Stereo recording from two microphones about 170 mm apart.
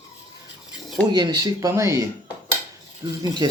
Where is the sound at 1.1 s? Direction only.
25° right (ahead or behind).